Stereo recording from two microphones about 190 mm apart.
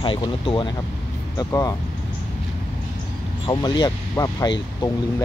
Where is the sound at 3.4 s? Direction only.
25° left (ahead or behind).